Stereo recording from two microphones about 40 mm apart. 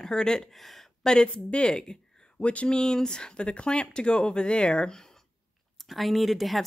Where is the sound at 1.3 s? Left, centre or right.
Left.